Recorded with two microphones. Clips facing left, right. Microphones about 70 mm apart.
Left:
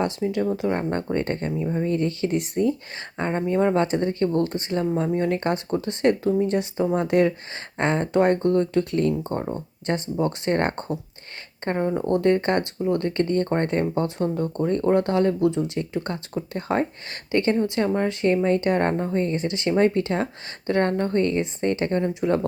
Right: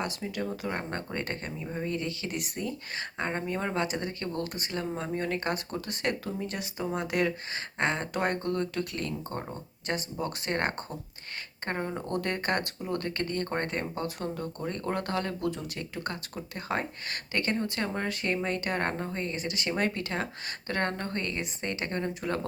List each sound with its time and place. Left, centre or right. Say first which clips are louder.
0.3 s speech: left 10 dB; left
1.9 s speech: left 11 dB; left; by 3.8 s centre
3.8 s speech: left 10 dB; left